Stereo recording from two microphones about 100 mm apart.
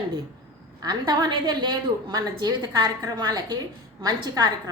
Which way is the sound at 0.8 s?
45° right (ahead or behind).